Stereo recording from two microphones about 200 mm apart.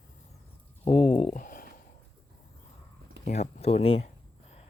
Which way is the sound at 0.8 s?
30° left (ahead or behind).